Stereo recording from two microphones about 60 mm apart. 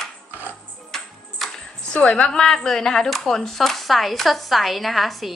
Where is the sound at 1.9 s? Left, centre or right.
Centre.